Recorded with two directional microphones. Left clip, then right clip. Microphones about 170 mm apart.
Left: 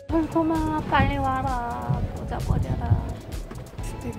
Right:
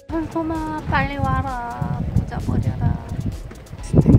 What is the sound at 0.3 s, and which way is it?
Speech, centre (ahead or behind).